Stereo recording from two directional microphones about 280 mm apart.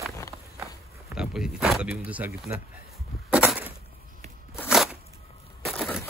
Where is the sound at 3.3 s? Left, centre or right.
Centre.